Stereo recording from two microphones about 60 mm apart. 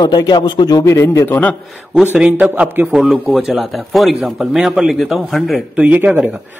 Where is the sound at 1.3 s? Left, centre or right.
Left.